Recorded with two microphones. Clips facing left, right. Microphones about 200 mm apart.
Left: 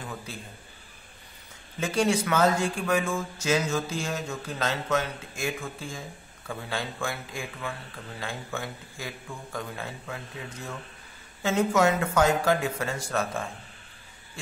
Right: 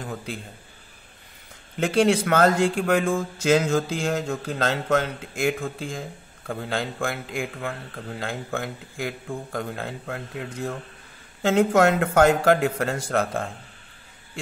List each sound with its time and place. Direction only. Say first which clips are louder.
1.8 s speech: right 5 dB; 65° right (ahead or behind)
5.8 s speech: right 6 dB; 90° right
6.4 s speech: right 5 dB; 55° right (ahead or behind); by 7.4 s 75° right (ahead or behind)
7.5 s speech: right 4 dB; 55° right (ahead or behind)